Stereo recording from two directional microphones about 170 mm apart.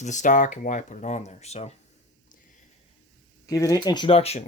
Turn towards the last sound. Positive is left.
turn(degrees=35)  # may be behind; listen again after turning